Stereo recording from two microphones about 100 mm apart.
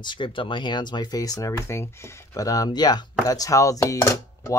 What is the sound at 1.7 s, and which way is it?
Speech, 25° left (ahead or behind).